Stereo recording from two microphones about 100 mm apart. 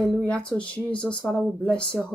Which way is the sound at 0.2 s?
10° left (ahead or behind).